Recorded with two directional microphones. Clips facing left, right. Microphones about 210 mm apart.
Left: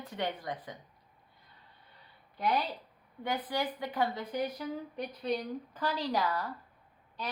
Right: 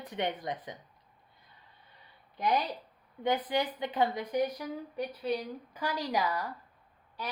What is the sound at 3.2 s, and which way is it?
A woman's voice, 20° right (ahead or behind).